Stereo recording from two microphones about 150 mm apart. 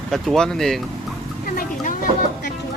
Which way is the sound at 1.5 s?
70° left (ahead or behind).